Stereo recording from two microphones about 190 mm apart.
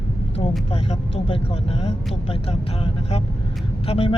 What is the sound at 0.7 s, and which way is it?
Speech, 35° left (ahead or behind).